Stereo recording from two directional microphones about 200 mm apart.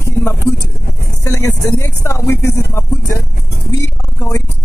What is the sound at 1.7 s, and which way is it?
Speech, 15° left (ahead or behind).